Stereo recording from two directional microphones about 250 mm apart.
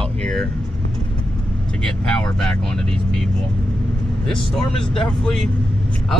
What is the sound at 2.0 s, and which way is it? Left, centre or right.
Speech, centre.